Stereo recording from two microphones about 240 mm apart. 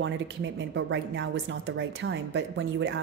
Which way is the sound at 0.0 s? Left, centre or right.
Right.